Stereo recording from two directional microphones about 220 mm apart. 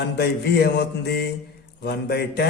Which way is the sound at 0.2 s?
45° left (ahead or behind).